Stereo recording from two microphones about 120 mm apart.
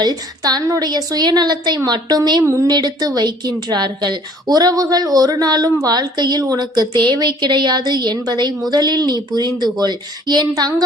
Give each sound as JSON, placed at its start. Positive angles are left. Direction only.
{"t": 0.0, "sound": "a woman's voice", "side_deg": -35}